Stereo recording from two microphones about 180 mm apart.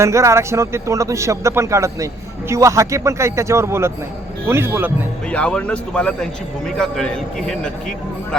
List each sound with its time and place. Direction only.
0.0 s speech: 15° right (ahead or behind)
5.3 s a man's voice: 5° left (ahead or behind)